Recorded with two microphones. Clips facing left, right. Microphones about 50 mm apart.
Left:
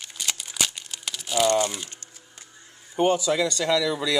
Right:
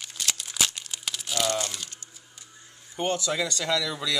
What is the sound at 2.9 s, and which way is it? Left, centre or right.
Speech, centre.